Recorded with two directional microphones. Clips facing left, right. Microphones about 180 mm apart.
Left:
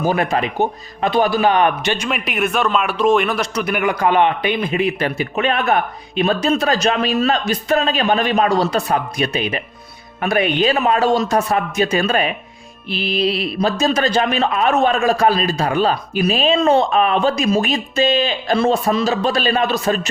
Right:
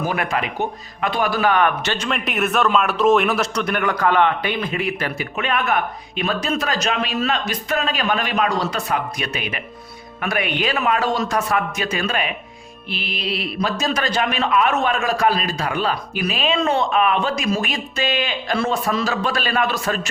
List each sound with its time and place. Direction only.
0.0 s a man's voice: 30° left (ahead or behind)